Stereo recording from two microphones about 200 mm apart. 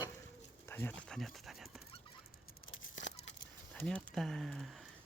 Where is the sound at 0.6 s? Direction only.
10° left (ahead or behind).